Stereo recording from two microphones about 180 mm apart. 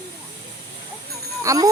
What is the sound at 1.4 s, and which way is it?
Speech, 20° right (ahead or behind).